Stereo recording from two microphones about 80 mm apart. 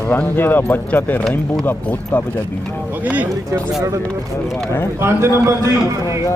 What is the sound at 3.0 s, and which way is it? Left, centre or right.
Speech, centre.